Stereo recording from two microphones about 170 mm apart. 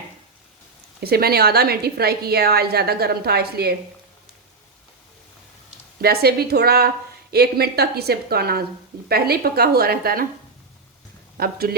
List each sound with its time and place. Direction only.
1.0 s a woman's voice: 65° right (ahead or behind)
6.0 s a woman's voice: 65° right (ahead or behind)
11.3 s a woman's voice: 65° right (ahead or behind)